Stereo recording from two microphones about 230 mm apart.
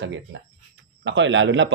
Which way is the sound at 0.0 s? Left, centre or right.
Right.